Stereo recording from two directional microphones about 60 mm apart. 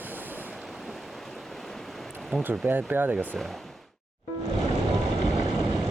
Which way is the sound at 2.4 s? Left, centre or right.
Right.